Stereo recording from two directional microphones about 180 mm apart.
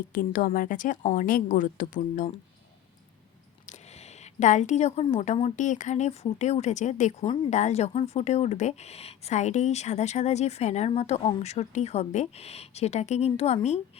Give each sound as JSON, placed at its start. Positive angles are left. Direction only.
{"t": 0.1, "sound": "speech", "side_deg": 50}
{"t": 3.7, "sound": "a sound", "side_deg": 40}
{"t": 5.5, "sound": "speech", "side_deg": 40}